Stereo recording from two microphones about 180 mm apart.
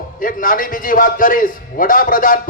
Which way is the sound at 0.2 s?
50° left (ahead or behind).